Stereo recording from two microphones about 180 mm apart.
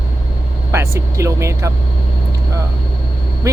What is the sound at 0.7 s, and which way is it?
Speech, 15° right (ahead or behind).